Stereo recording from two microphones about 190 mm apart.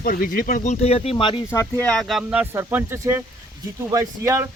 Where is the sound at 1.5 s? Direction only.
15° left (ahead or behind).